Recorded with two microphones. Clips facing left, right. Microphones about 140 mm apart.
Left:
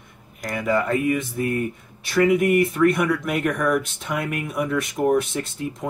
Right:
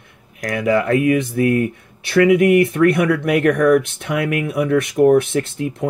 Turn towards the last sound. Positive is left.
turn(degrees=-75)  # may be behind; listen again after turning